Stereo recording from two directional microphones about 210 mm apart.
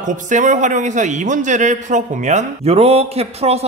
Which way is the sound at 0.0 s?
35° right (ahead or behind).